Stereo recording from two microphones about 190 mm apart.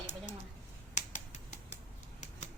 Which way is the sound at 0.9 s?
40° left (ahead or behind).